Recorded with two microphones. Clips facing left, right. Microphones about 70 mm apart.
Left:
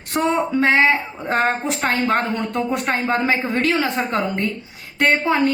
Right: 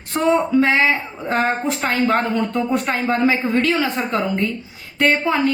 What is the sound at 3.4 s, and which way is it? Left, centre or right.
A woman's voice, left.